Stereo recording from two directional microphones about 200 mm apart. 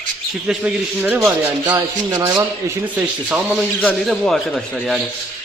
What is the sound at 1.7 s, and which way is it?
Speech, 20° right (ahead or behind).